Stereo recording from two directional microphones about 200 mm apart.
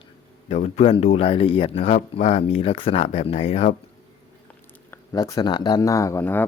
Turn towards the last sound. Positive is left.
turn(degrees=10)  # may be behind; listen again after turning